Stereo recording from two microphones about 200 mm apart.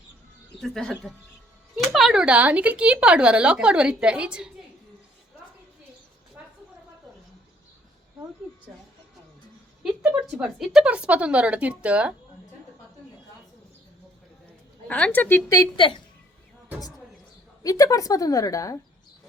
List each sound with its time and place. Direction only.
0.6 s speech: centre (ahead or behind)
9.8 s speech: 5° right (ahead or behind)
14.8 s a woman's voice: 5° left (ahead or behind); by 16.0 s 25° left (ahead or behind)
17.6 s a woman's voice: 15° left (ahead or behind)